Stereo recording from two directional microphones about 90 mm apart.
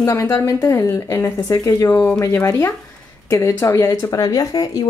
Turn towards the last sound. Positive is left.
turn(degrees=45)  # may be behind; listen again after turning